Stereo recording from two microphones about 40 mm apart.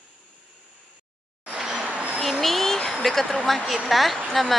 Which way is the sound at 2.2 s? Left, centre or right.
Centre.